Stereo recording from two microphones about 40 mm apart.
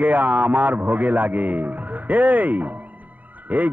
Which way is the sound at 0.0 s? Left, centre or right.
Right.